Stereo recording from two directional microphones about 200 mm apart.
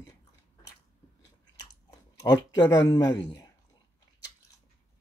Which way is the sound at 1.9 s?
20° left (ahead or behind).